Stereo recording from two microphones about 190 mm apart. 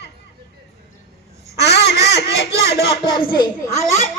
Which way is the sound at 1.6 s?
60° left (ahead or behind).